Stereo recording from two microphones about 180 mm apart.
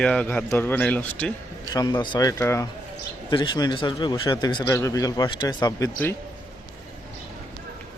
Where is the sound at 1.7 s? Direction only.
20° left (ahead or behind).